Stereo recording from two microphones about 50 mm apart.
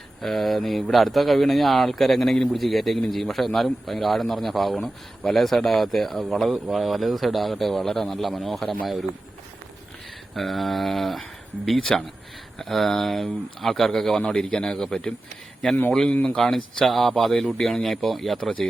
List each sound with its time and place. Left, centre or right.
0.2 s a man's voice: centre
10.3 s a man's voice: centre
14.2 s a man's voice: centre
16.4 s a man's voice: centre